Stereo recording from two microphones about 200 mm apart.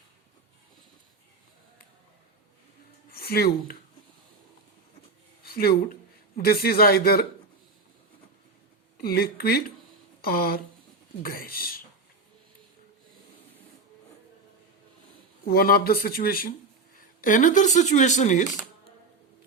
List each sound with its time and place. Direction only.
3.1 s speech: 50° left (ahead or behind)
5.4 s a man's voice: 50° left (ahead or behind)
9.0 s speech: 50° left (ahead or behind)
15.4 s speech: 50° left (ahead or behind)
17.0 s a sound: 40° left (ahead or behind)
17.7 s speech: 40° left (ahead or behind)